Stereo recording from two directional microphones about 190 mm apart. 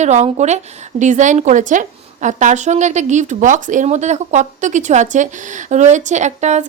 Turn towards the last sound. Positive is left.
turn(degrees=-35)  # may be behind; listen again after turning